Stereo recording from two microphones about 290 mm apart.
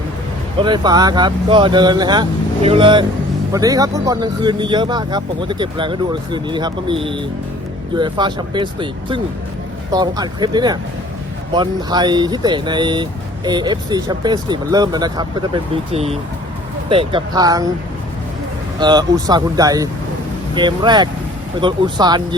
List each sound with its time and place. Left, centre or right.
0.6 s speech: centre
18.8 s speech: centre